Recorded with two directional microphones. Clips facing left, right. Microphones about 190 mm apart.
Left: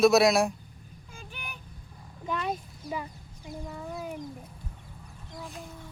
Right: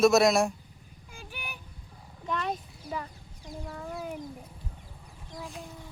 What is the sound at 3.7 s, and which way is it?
Speech, 5° left (ahead or behind).